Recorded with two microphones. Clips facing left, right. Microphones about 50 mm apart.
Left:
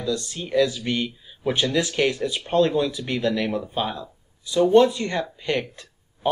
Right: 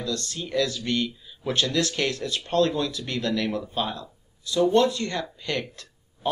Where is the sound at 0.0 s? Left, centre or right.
Centre.